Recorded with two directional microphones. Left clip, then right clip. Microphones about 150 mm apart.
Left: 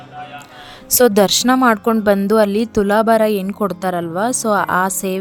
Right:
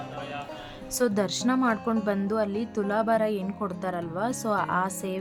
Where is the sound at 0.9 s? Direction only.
65° left (ahead or behind).